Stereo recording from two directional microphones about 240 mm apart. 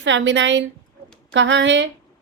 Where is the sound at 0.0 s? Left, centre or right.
Right.